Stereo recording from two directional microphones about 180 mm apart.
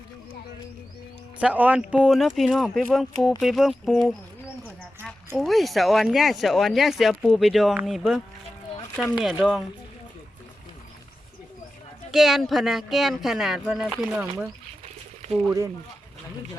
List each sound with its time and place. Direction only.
1.4 s speech: 10° right (ahead or behind)
5.4 s speech: centre (ahead or behind)
12.1 s speech: centre (ahead or behind)
15.4 s speech: 20° right (ahead or behind)